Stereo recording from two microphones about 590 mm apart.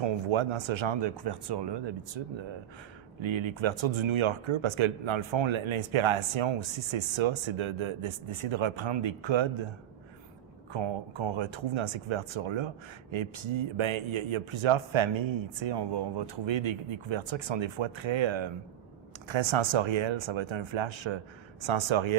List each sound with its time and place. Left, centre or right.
0.0 s speech: right
10.7 s speech: right